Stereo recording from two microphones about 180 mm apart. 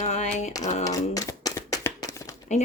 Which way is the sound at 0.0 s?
40° left (ahead or behind).